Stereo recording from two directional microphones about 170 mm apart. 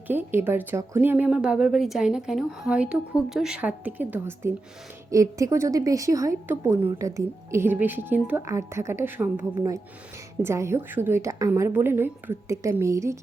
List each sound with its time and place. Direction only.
0.1 s a woman's voice: 15° right (ahead or behind)